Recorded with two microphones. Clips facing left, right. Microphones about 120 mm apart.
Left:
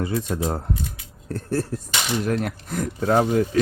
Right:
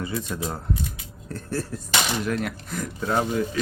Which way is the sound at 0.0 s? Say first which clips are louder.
Left 5 dB; 55° left (ahead or behind).